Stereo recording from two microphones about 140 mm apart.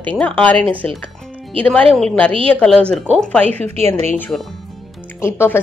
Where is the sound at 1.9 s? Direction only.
10° left (ahead or behind).